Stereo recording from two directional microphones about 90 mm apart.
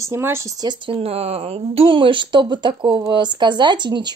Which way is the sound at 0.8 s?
90° right.